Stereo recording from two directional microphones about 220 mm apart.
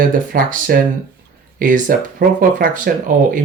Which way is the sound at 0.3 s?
40° right (ahead or behind).